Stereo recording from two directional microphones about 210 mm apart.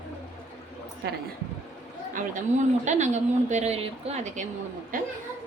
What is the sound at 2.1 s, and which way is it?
A woman's voice, 35° right (ahead or behind).